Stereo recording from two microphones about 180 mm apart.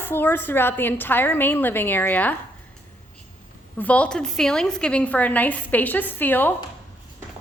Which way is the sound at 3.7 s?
10° left (ahead or behind).